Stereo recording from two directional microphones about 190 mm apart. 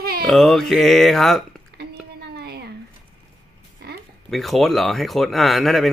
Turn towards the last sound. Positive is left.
turn(degrees=0)  # may be behind; listen again after turning